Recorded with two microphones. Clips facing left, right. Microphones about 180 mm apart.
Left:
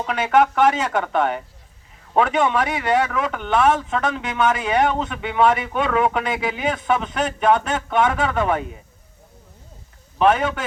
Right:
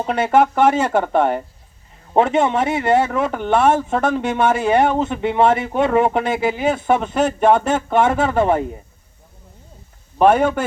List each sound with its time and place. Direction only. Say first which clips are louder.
0.0 s speech: right 2 dB; 30° right (ahead or behind)